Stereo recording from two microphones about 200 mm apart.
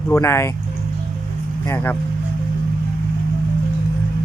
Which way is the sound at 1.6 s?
10° left (ahead or behind).